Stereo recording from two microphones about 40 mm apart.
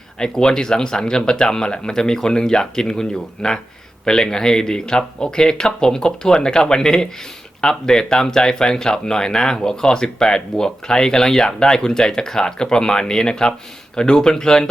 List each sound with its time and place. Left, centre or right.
0.2 s speech: centre